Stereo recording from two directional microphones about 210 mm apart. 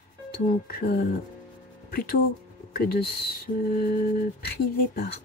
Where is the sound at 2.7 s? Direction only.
45° left (ahead or behind).